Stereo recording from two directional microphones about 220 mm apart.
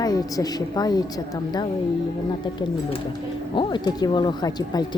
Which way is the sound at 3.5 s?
20° left (ahead or behind).